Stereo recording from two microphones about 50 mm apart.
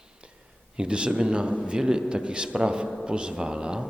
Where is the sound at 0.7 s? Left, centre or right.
Centre.